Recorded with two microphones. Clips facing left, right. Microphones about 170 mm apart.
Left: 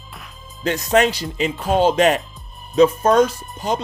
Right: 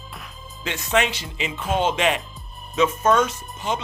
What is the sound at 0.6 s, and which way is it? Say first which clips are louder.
A man's voice: left 6 dB; 40° left (ahead or behind).